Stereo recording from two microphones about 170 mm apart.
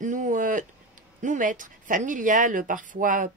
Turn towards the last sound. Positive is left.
turn(degrees=-50)  # may be behind; listen again after turning